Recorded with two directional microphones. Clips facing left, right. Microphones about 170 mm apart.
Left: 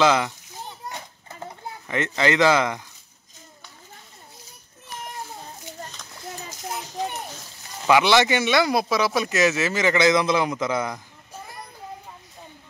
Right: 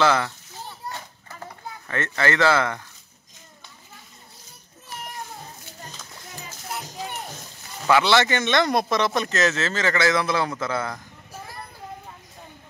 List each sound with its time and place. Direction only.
0.0 s children playing: 15° left (ahead or behind)
7.8 s speech: 15° left (ahead or behind)